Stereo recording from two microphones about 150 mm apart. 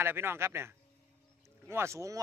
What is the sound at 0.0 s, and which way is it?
Speech, 15° right (ahead or behind).